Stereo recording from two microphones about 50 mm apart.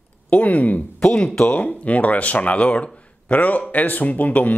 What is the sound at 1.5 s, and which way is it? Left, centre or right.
Speech, left.